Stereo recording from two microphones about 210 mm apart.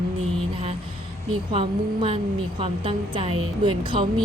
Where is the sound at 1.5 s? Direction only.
25° right (ahead or behind).